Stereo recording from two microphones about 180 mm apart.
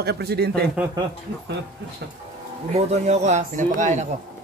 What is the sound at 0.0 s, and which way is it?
Speech, 65° right (ahead or behind).